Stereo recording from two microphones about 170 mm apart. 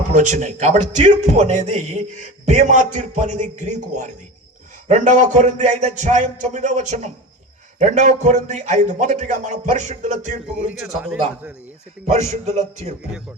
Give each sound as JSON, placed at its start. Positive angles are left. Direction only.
{"t": 0.1, "sound": "speech", "side_deg": -45}
{"t": 10.7, "sound": "a man's voice", "side_deg": -5}
{"t": 12.0, "sound": "a man's voice", "side_deg": -40}